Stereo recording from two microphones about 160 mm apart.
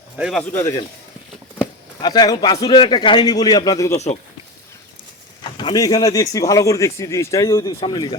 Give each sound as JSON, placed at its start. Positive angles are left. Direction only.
{"t": 0.2, "sound": "speech", "side_deg": 0}
{"t": 2.0, "sound": "speech", "side_deg": 25}
{"t": 3.9, "sound": "speech", "side_deg": 45}
{"t": 5.4, "sound": "speech", "side_deg": 30}
{"t": 7.7, "sound": "speech", "side_deg": 30}